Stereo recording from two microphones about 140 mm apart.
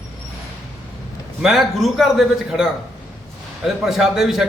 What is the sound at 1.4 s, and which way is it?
A man's voice, centre (ahead or behind).